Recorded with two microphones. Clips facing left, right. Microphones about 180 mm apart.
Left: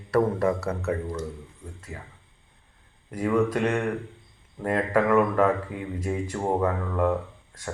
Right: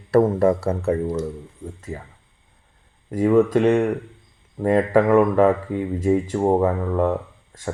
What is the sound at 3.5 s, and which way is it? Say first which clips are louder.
Speech: right 8 dB; 25° right (ahead or behind).